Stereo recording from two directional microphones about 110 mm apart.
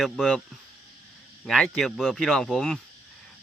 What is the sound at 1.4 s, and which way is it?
Speech, centre (ahead or behind).